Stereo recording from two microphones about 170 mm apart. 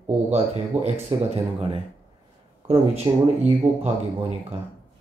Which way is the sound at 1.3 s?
35° right (ahead or behind).